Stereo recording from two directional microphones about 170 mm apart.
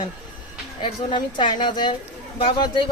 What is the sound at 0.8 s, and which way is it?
Speech, 25° left (ahead or behind).